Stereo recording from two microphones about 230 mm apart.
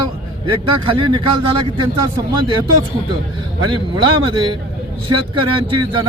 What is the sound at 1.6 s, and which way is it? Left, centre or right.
Speech, right.